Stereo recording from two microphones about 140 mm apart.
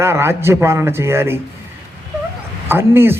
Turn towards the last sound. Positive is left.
turn(degrees=-15)  # may be behind; listen again after turning